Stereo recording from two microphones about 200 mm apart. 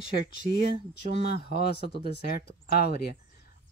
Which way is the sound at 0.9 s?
55° left (ahead or behind).